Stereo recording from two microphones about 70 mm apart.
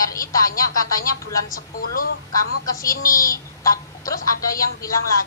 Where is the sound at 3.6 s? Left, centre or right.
Left.